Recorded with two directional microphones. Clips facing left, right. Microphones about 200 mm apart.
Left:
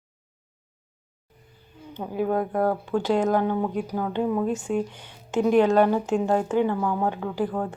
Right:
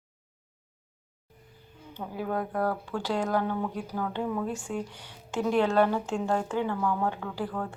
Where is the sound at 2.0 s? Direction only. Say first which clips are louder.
Left 7 dB; 20° left (ahead or behind).